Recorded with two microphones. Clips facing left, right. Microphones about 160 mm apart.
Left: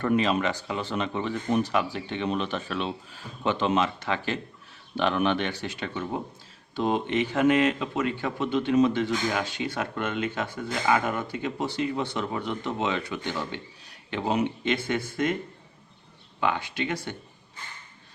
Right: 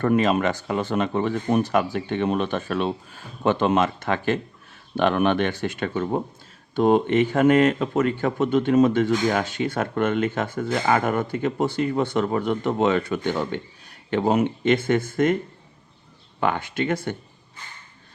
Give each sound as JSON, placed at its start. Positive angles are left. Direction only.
{"t": 0.0, "sound": "speech", "side_deg": -50}
{"t": 16.4, "sound": "speech", "side_deg": -50}